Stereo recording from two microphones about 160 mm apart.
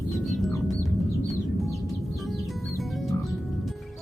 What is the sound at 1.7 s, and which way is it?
Music, centre (ahead or behind).